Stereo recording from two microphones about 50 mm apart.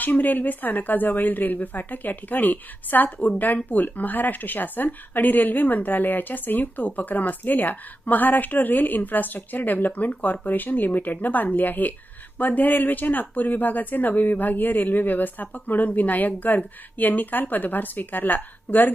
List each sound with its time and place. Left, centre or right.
0.0 s speech: left